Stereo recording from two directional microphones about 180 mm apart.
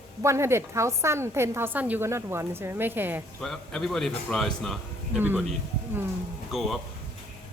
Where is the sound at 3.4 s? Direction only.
5° left (ahead or behind).